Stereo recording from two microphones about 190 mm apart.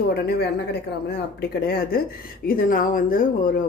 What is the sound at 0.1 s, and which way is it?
A woman's voice, 60° left (ahead or behind).